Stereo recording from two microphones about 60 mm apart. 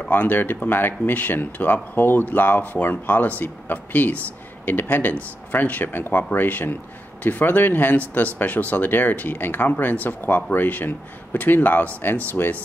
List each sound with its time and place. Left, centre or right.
0.0 s speech: left